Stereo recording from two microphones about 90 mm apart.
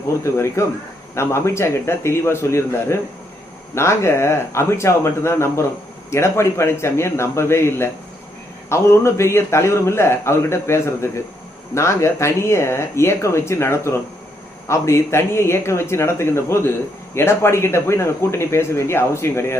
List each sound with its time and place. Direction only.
0.3 s a man's voice: 30° left (ahead or behind)